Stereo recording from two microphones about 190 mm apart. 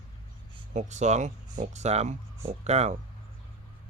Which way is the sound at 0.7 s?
40° right (ahead or behind).